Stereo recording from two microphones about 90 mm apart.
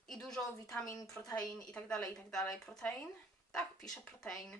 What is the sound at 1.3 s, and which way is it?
A woman's voice, 5° left (ahead or behind).